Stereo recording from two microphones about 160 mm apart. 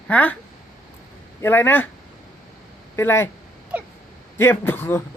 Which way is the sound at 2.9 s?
15° left (ahead or behind).